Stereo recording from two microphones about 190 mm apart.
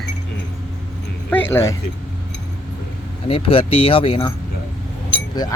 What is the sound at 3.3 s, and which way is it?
Speech, 30° left (ahead or behind).